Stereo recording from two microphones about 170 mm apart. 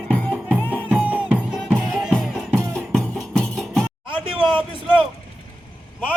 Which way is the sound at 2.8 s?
Centre (ahead or behind).